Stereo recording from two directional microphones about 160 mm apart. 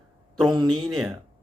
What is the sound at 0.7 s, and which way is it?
Speech, centre (ahead or behind).